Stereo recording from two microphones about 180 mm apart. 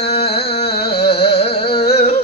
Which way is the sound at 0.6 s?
60° left (ahead or behind).